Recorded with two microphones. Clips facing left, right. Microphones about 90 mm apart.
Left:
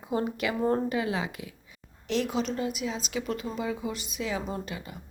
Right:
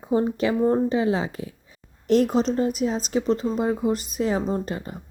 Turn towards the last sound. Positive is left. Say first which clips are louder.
# right 8 dB
turn(degrees=-40)  # may be behind; listen again after turning